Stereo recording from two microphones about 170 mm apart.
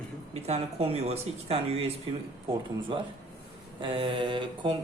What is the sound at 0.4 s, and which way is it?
Speech, 35° right (ahead or behind).